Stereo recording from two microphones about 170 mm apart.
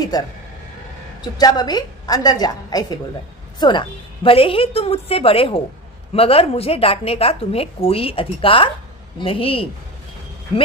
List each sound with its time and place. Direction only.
0.1 s a woman's voice: 20° left (ahead or behind)